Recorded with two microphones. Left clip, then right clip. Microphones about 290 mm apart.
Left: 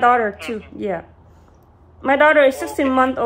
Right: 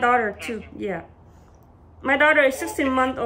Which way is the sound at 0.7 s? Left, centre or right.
Centre.